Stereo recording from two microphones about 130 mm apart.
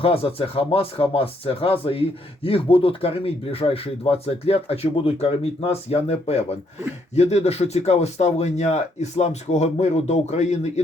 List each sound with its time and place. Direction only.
0.0 s speech: 45° left (ahead or behind)